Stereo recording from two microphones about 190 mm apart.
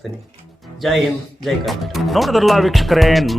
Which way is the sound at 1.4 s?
Centre (ahead or behind).